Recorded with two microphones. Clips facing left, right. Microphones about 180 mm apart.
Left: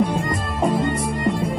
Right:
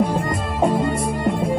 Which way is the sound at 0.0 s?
Centre (ahead or behind).